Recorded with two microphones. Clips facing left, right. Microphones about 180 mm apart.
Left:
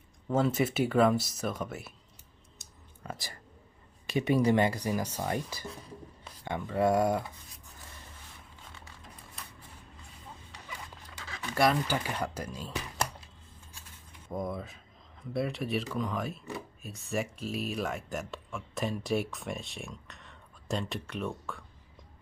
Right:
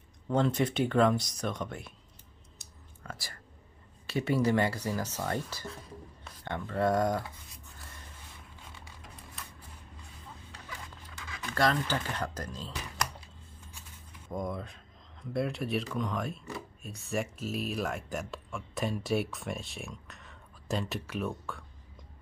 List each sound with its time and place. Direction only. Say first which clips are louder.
0.3 s speech: even; 5° left (ahead or behind)
2.6 s whispering: left 3 dB; 20° left (ahead or behind)
4.0 s speech: left 2 dB; 20° left (ahead or behind)
11.5 s speech: left 2 dB; 10° left (ahead or behind)
14.3 s speech: even; 5° left (ahead or behind)